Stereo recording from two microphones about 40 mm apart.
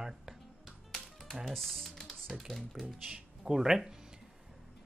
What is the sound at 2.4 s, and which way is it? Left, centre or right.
Speech, centre.